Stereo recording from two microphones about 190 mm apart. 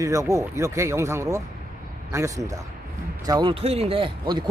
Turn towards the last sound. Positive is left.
turn(degrees=-25)  # may be behind; listen again after turning